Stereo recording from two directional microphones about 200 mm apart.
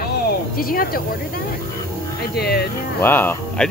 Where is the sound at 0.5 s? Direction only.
45° left (ahead or behind).